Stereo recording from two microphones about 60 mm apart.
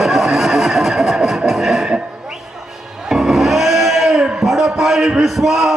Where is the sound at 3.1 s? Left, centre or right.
Centre.